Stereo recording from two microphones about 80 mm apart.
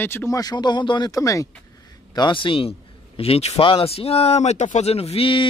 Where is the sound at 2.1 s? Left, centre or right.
Left.